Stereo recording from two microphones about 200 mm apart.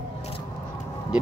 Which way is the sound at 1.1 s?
5° right (ahead or behind).